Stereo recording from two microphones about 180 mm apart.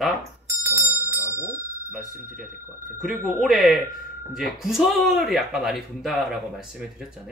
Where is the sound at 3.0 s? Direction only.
Centre (ahead or behind).